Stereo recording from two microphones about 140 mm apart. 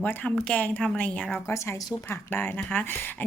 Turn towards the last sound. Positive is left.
turn(degrees=15)  # may be behind; listen again after turning